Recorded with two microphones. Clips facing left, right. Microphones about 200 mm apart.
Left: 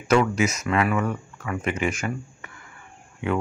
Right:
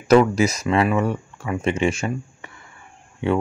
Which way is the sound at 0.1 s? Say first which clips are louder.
Right 5 dB; 35° right (ahead or behind).